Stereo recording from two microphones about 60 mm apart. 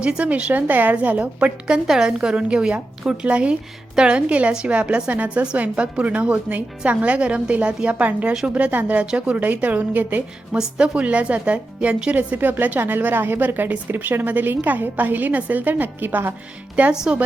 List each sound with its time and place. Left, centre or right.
0.0 s a woman's voice: centre
10.5 s a woman's voice: centre
12.1 s a woman's voice: right
16.9 s a woman's voice: centre